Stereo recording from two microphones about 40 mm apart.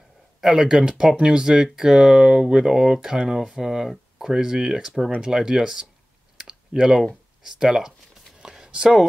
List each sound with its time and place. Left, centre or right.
0.4 s speech: centre
6.3 s clicking: centre
7.4 s speech: centre
8.4 s a sound: centre